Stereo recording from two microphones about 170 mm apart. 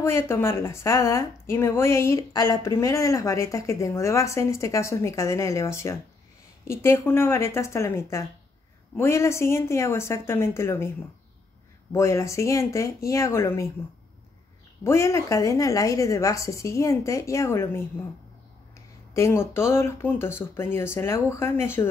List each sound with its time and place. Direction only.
0.0 s speech: 15° left (ahead or behind)
11.9 s speech: 15° left (ahead or behind)
14.8 s speech: 15° left (ahead or behind)
19.1 s speech: 15° left (ahead or behind)